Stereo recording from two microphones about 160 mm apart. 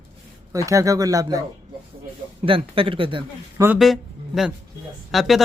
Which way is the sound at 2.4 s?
35° right (ahead or behind).